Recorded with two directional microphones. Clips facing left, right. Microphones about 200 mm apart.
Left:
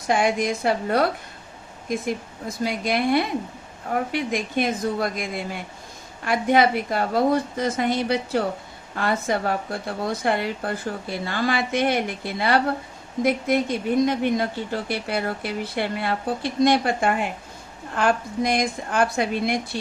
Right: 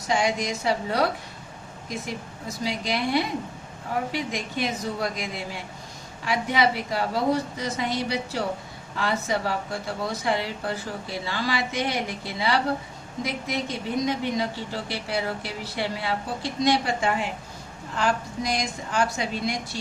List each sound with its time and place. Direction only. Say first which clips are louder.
0.1 s a woman's voice: left 4 dB; 55° left (ahead or behind)
14.0 s speech: left 3 dB; 55° left (ahead or behind)